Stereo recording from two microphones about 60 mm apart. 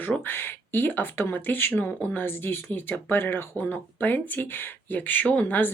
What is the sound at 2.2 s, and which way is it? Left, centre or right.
Speech, left.